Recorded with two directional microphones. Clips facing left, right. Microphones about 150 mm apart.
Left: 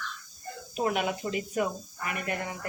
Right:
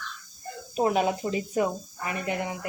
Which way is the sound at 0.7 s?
35° right (ahead or behind).